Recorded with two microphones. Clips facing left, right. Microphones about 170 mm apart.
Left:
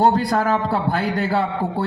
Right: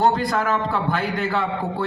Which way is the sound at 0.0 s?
35° left (ahead or behind).